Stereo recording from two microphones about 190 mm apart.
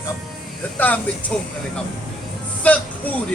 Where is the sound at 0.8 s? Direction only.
10° left (ahead or behind).